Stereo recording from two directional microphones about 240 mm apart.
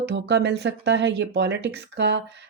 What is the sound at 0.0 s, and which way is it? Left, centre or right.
Speech, right.